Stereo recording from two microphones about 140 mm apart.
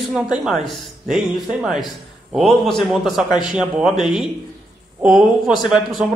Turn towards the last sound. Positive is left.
turn(degrees=-5)  # may be behind; listen again after turning